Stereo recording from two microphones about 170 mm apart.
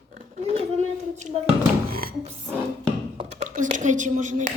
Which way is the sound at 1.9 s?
60° right (ahead or behind).